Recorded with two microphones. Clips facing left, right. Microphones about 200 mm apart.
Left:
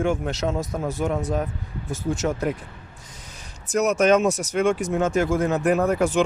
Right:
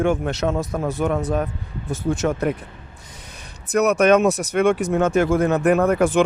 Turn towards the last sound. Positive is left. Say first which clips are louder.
# right 3 dB
turn(degrees=-55)  # may be behind; listen again after turning